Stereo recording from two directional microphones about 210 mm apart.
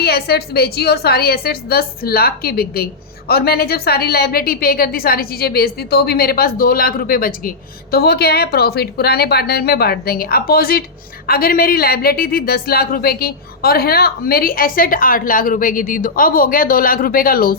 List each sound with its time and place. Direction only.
0.0 s a woman's voice: 50° left (ahead or behind)